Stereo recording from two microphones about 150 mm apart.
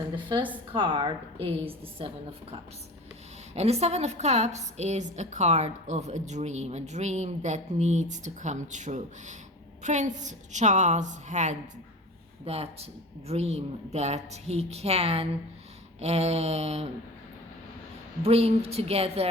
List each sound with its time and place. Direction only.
0.7 s a woman's voice: 35° right (ahead or behind)
3.5 s a woman's voice: 45° right (ahead or behind)
12.5 s a woman's voice: 45° right (ahead or behind)
18.2 s a woman's voice: 40° right (ahead or behind)